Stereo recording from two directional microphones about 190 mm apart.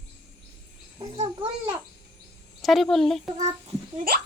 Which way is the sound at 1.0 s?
25° right (ahead or behind).